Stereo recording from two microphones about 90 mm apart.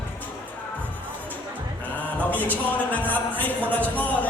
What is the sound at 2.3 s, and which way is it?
Music, 20° left (ahead or behind).